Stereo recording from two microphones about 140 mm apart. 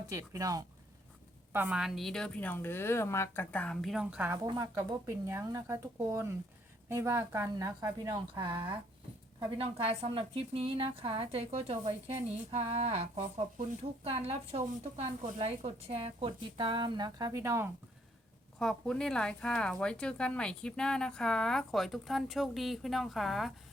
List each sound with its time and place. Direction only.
0.1 s speech: 25° right (ahead or behind)
1.5 s speech: 10° right (ahead or behind)
4.4 s a woman's voice: 25° right (ahead or behind)
18.6 s speech: 5° left (ahead or behind)